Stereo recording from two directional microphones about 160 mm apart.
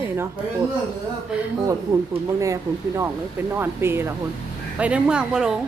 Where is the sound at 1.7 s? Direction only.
20° right (ahead or behind).